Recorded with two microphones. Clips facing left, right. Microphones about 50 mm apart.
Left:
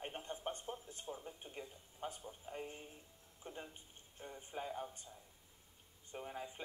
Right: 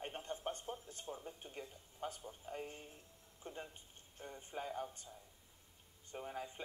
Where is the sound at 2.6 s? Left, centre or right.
Centre.